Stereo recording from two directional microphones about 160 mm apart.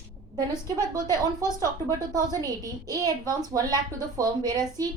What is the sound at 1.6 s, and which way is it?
A woman's voice, 25° right (ahead or behind).